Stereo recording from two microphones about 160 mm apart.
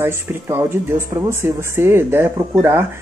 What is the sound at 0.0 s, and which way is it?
Speech, 15° right (ahead or behind).